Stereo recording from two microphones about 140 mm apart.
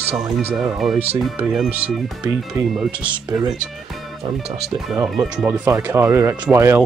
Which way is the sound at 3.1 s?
30° right (ahead or behind).